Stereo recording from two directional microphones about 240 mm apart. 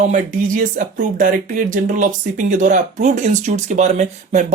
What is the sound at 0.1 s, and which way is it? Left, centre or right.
Speech, right.